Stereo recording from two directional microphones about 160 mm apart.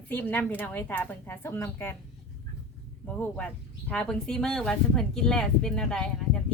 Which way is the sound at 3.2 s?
10° left (ahead or behind).